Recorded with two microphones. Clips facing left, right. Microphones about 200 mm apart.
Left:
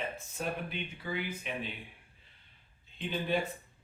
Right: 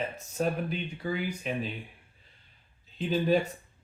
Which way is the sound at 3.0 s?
40° right (ahead or behind).